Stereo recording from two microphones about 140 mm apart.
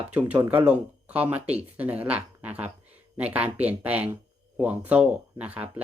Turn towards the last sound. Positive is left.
turn(degrees=-10)  # may be behind; listen again after turning